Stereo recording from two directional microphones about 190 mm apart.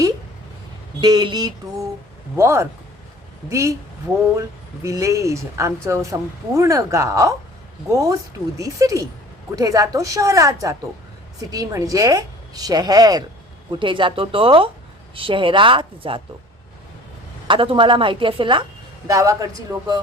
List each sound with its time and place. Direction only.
1.0 s a woman's voice: 20° right (ahead or behind)
17.5 s a woman's voice: 25° right (ahead or behind)